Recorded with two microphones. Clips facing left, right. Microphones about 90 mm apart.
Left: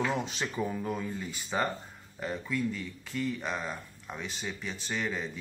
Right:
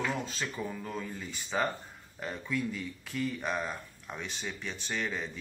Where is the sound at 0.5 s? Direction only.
15° left (ahead or behind).